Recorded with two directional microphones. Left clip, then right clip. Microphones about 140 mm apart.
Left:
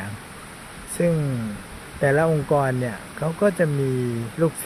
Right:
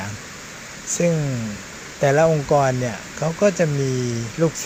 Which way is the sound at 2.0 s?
10° left (ahead or behind).